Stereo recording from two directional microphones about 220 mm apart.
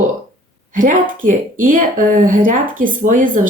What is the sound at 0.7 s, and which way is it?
Speech, 35° right (ahead or behind).